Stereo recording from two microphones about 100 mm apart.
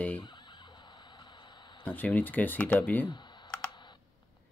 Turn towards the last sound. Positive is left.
turn(degrees=15)  # may be behind; listen again after turning